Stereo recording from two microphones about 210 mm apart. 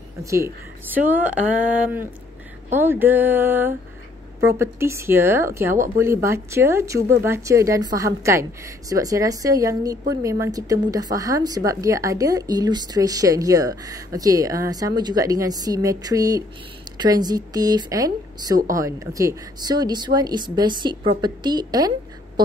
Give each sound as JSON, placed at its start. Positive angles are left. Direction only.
{"t": 0.2, "sound": "a woman's voice", "side_deg": -15}